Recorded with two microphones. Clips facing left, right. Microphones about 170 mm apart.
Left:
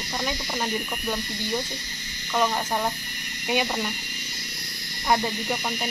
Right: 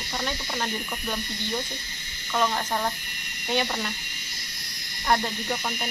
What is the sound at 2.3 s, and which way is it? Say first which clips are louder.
Speech: left 1 dB; 10° left (ahead or behind).